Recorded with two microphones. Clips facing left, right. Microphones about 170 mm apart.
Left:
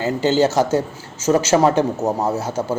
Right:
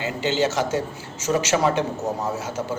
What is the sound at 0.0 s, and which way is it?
A man's voice, 40° left (ahead or behind).